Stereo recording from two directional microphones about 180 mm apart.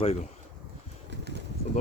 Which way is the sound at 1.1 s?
70° right (ahead or behind).